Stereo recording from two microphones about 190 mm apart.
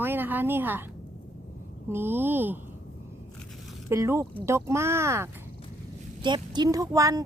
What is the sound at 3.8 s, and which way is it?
Speech, 15° right (ahead or behind).